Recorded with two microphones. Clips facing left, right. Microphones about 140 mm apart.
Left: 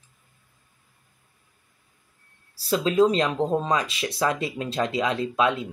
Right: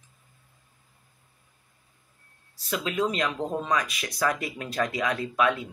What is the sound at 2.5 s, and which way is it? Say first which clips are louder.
Speech: left 8 dB; 35° left (ahead or behind).